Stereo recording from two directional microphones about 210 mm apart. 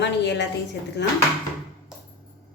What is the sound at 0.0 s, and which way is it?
Speech, 55° left (ahead or behind).